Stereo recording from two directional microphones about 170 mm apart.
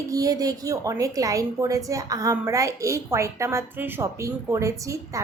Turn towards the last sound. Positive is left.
turn(degrees=-15)  # may be behind; listen again after turning